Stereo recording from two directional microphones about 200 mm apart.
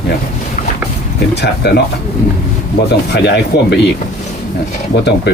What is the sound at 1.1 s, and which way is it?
Speech, 55° left (ahead or behind).